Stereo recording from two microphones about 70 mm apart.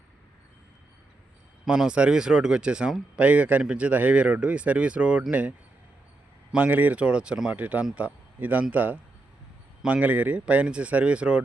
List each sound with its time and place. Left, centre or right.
1.6 s a man's voice: centre
7.5 s a man's voice: right